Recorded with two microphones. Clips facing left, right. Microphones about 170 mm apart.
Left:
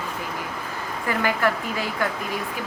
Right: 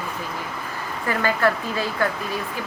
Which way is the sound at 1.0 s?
15° left (ahead or behind).